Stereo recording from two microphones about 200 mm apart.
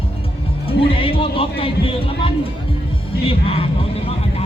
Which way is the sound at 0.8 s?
25° left (ahead or behind).